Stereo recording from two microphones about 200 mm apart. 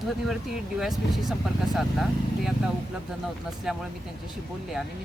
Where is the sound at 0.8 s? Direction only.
Centre (ahead or behind).